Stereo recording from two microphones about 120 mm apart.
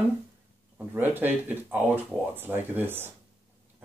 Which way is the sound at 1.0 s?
15° right (ahead or behind).